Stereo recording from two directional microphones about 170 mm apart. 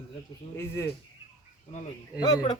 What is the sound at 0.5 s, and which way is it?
Speech, 15° left (ahead or behind).